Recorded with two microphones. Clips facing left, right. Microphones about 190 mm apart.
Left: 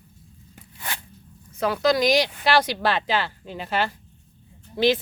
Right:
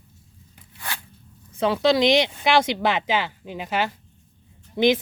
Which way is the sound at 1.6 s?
25° right (ahead or behind).